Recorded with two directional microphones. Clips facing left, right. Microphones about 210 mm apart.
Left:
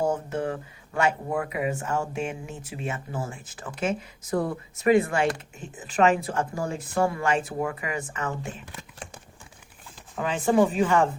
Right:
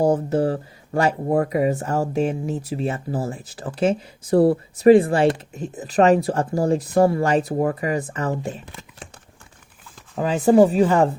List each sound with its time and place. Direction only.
0.0 s speech: 35° right (ahead or behind)
10.2 s speech: 40° right (ahead or behind)